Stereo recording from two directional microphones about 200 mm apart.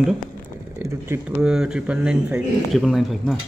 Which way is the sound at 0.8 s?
15° right (ahead or behind).